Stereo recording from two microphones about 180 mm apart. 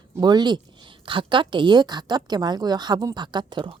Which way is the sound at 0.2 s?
25° right (ahead or behind).